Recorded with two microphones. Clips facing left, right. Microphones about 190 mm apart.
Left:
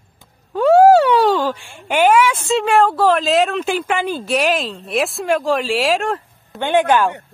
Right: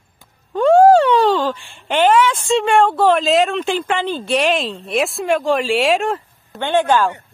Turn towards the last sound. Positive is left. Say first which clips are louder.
# left 1 dB
turn(degrees=15)  # may be behind; listen again after turning